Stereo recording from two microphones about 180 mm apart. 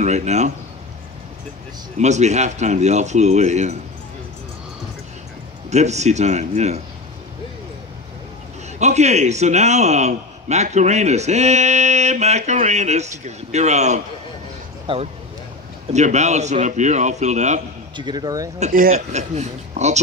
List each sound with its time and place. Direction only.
0.0 s a man's voice: 40° right (ahead or behind)
2.0 s a man's voice: 40° right (ahead or behind)
5.7 s a man's voice: 40° right (ahead or behind)
8.7 s a man's voice: 40° right (ahead or behind)
14.9 s speech: 30° right (ahead or behind)
15.9 s a man's voice: 40° right (ahead or behind)
17.9 s speech: 25° right (ahead or behind)
18.6 s speech: 50° right (ahead or behind)
18.9 s a man's voice: 40° right (ahead or behind)